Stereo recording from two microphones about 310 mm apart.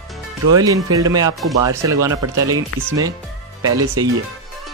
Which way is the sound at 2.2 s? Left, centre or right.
Right.